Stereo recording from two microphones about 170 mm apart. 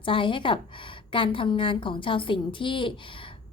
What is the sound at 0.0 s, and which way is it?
A woman's voice, 30° left (ahead or behind).